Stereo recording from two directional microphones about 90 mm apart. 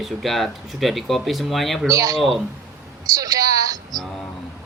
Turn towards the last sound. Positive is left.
turn(degrees=-40)  # may be behind; listen again after turning